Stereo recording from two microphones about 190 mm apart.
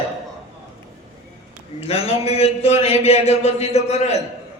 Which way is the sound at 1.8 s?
35° left (ahead or behind).